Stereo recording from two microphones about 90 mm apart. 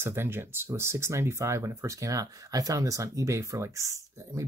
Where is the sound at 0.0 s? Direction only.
25° right (ahead or behind).